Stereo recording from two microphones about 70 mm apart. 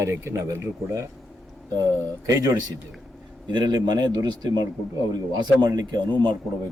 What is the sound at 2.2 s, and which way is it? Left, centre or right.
Speech, right.